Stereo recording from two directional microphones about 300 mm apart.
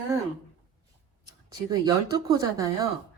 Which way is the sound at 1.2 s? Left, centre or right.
Centre.